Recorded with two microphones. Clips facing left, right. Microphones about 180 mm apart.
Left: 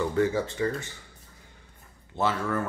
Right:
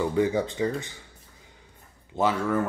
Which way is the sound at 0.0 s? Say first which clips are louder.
Right 1 dB; 15° right (ahead or behind).